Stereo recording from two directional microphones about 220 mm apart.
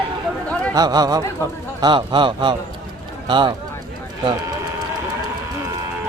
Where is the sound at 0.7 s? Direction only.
15° right (ahead or behind).